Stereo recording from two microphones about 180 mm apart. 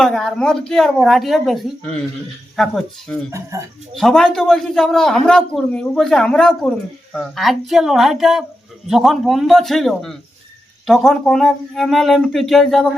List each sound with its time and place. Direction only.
0.0 s a man's voice: centre (ahead or behind)
3.5 s a man's voice: 15° right (ahead or behind)
3.9 s a man's voice: centre (ahead or behind)